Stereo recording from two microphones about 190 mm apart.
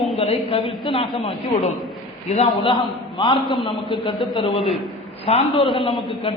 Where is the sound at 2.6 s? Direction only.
25° left (ahead or behind).